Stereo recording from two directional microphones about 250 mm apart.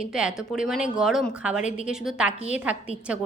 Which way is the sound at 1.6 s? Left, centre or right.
Left.